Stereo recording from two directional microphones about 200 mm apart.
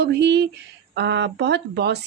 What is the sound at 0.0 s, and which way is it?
Speech, 55° right (ahead or behind).